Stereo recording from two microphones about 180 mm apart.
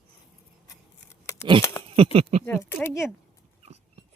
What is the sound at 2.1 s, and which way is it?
Speech, 35° right (ahead or behind).